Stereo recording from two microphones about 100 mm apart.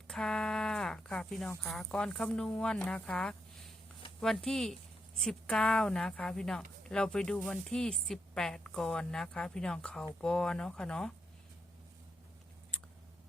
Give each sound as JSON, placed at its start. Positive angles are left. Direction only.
{"t": 0.1, "sound": "speech", "side_deg": 5}